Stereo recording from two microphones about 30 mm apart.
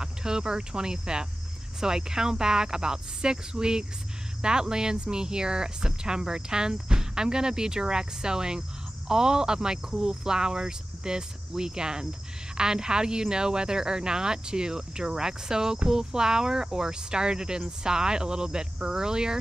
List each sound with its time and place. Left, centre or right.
0.0 s cricket: right
1.8 s speech: right